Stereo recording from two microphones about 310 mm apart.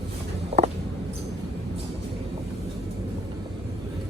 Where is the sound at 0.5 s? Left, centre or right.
Centre.